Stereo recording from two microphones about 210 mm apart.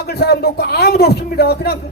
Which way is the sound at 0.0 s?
50° left (ahead or behind).